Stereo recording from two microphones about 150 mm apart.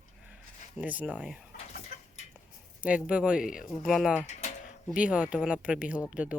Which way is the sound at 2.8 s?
10° right (ahead or behind).